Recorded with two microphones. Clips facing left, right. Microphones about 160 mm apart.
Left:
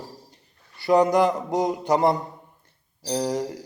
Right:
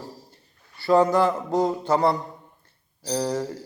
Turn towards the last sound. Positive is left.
turn(degrees=15)  # may be behind; listen again after turning